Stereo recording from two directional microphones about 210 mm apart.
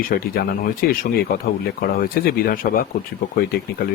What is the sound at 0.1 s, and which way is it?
Speech, 45° left (ahead or behind).